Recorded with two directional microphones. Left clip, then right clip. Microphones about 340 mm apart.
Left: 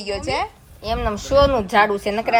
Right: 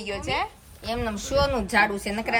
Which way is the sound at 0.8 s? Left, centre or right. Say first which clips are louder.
Left 6 dB; centre.